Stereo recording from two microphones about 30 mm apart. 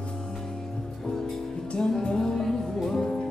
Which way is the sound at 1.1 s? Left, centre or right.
Left.